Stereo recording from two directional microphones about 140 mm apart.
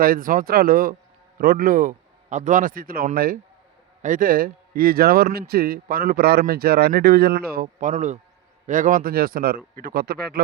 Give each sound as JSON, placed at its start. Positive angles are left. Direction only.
{"t": 0.0, "sound": "a man's voice", "side_deg": -85}
{"t": 4.0, "sound": "a man's voice", "side_deg": -75}